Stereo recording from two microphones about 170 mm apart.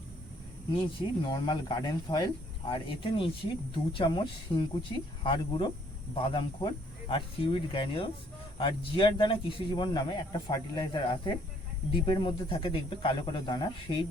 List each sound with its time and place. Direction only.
0.8 s speech: 25° left (ahead or behind)